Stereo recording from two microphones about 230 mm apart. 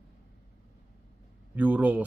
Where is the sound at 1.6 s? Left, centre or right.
Centre.